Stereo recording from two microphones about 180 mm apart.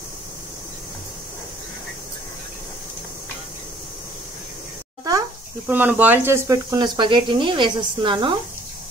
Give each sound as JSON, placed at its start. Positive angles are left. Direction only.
{"t": 5.7, "sound": "speech", "side_deg": -10}